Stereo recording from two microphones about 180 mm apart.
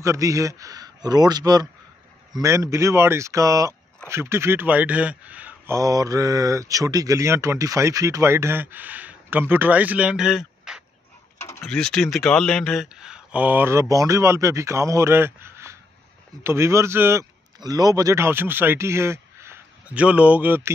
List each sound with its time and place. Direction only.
0.0 s a man's voice: 15° right (ahead or behind)